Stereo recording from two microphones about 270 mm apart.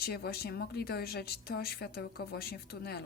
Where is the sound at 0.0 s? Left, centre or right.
Left.